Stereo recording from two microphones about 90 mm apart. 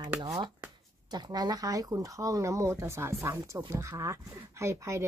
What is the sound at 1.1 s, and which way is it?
Speech, 50° right (ahead or behind).